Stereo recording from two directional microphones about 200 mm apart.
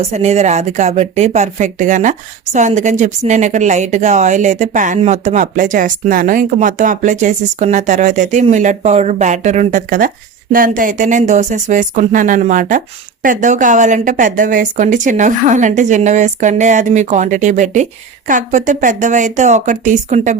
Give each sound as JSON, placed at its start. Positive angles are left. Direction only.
{"t": 0.1, "sound": "speech", "side_deg": -35}